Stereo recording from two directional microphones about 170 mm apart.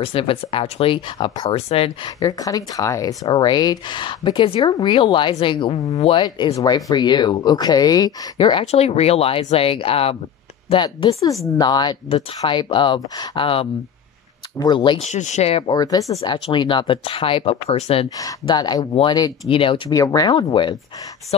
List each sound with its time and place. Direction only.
0.0 s speech: 35° left (ahead or behind)
2.1 s speech: 20° left (ahead or behind)
15.0 s speech: 45° left (ahead or behind)
15.8 s speech: 20° left (ahead or behind)
16.2 s speech: 30° left (ahead or behind)
18.2 s speech: 25° left (ahead or behind)